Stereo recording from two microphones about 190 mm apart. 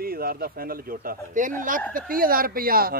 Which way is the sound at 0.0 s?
50° right (ahead or behind).